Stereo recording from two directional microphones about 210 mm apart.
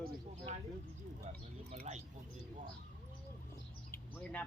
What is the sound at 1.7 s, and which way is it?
Mouse, 35° right (ahead or behind).